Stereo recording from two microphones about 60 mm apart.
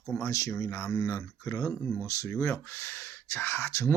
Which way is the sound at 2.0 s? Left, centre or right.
Left.